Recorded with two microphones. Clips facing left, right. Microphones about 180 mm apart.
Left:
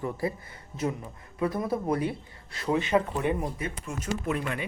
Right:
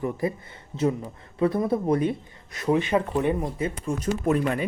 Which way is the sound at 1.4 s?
25° right (ahead or behind).